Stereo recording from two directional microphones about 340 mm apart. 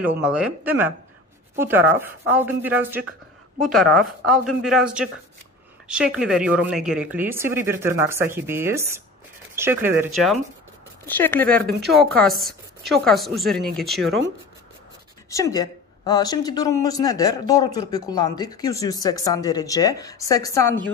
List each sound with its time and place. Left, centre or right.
0.0 s speech: centre
15.2 s a woman's voice: centre